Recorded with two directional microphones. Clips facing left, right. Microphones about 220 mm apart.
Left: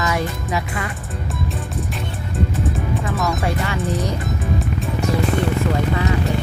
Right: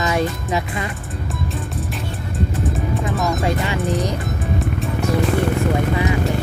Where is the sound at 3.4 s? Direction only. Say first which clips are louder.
Right 2 dB; 15° right (ahead or behind).